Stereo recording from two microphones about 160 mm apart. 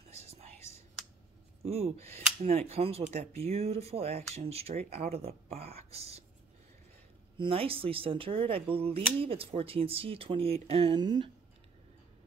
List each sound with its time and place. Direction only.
1.6 s speech: 40° right (ahead or behind)
7.3 s speech: 35° right (ahead or behind)
11.0 s speech: 25° right (ahead or behind)